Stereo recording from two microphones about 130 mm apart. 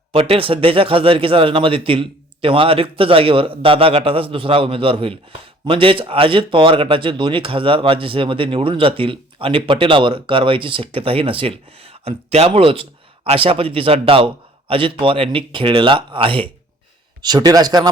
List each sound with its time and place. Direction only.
0.1 s speech: 45° right (ahead or behind)
17.2 s speech: 30° right (ahead or behind)